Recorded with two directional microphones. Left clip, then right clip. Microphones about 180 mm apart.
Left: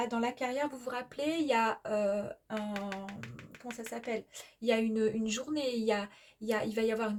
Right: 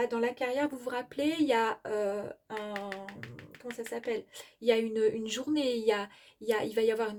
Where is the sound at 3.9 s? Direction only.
45° right (ahead or behind).